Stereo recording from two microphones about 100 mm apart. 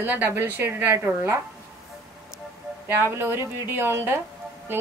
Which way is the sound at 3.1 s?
25° right (ahead or behind).